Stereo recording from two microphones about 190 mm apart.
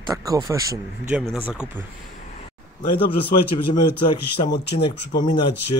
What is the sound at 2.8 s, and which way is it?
Speech, 55° left (ahead or behind).